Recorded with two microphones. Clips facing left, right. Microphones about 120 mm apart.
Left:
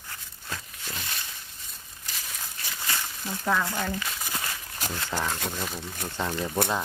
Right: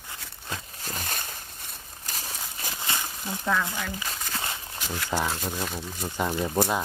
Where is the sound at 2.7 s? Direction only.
20° right (ahead or behind).